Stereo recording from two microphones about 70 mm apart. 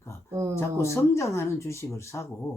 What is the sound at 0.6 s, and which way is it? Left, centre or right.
Speech, left.